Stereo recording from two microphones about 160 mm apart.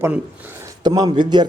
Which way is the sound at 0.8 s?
25° right (ahead or behind).